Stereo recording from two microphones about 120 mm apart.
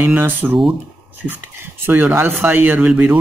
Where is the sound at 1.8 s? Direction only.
15° right (ahead or behind).